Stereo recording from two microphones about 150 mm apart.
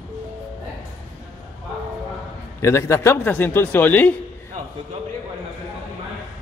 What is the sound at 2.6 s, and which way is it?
A man's voice, 20° left (ahead or behind).